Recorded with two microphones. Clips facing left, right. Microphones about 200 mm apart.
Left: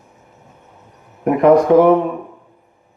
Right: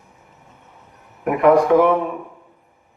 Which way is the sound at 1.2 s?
35° left (ahead or behind).